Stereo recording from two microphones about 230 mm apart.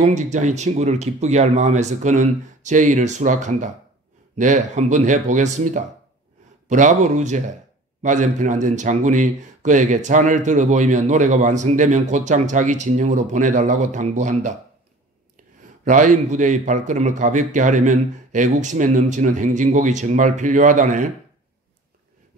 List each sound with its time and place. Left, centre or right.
0.0 s a man's voice: right